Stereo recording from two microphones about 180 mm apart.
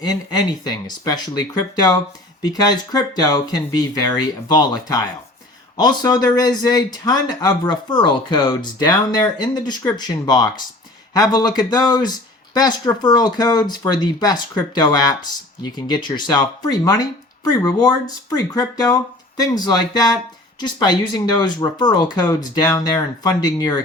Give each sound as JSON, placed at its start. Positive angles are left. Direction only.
{"t": 0.0, "sound": "speech", "side_deg": 20}